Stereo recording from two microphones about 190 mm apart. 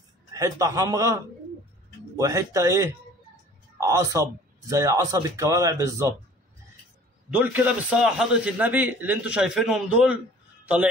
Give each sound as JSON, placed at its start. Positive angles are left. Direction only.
{"t": 0.3, "sound": "a man's voice", "side_deg": -15}
{"t": 7.3, "sound": "a man's voice", "side_deg": -10}